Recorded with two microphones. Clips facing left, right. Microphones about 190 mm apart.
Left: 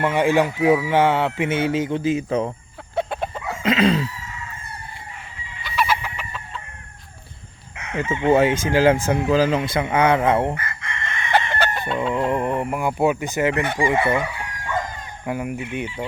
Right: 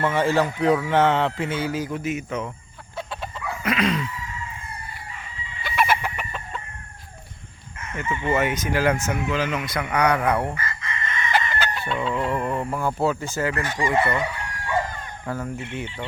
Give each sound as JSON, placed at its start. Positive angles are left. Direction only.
{"t": 0.0, "sound": "speech", "side_deg": 15}
{"t": 1.5, "sound": "speech", "side_deg": 25}
{"t": 2.9, "sound": "chicken", "side_deg": 55}
{"t": 3.6, "sound": "speech", "side_deg": 25}
{"t": 5.6, "sound": "chicken", "side_deg": -55}
{"t": 7.8, "sound": "chicken", "side_deg": 75}
{"t": 8.3, "sound": "speech", "side_deg": 30}
{"t": 10.5, "sound": "chicken", "side_deg": 60}
{"t": 12.3, "sound": "speech", "side_deg": 20}
{"t": 15.3, "sound": "speech", "side_deg": 15}